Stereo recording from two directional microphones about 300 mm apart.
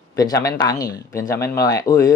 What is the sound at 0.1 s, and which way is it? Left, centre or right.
Speech, centre.